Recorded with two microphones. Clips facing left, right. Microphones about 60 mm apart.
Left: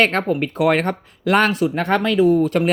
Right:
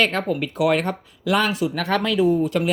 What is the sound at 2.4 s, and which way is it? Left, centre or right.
Speech, left.